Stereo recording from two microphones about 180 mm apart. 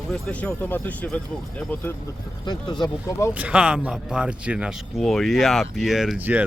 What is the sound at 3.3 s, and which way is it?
Speech, 5° right (ahead or behind).